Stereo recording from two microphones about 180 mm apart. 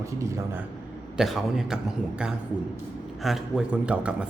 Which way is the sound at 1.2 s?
Centre (ahead or behind).